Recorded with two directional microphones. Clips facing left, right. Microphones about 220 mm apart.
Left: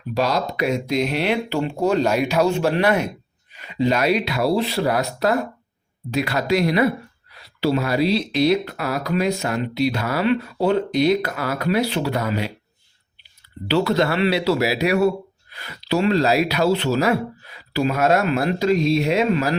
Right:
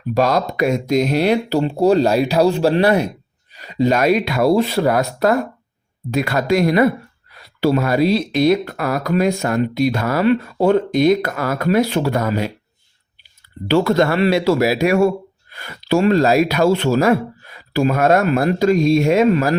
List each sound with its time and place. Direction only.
0.1 s a man's voice: 50° right (ahead or behind)
13.7 s a man's voice: 50° right (ahead or behind)